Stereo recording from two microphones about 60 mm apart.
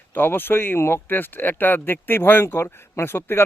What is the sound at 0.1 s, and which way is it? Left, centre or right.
Speech, left.